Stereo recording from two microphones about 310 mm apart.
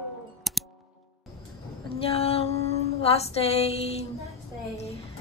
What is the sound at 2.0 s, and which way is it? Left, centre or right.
Female singing, centre.